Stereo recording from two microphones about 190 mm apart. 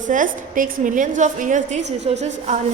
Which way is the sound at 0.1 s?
45° right (ahead or behind).